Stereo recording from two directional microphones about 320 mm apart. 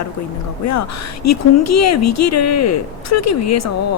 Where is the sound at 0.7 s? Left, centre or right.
Left.